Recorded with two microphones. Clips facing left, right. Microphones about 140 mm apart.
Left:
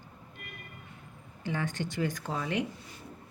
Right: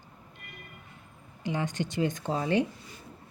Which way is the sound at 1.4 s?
20° right (ahead or behind).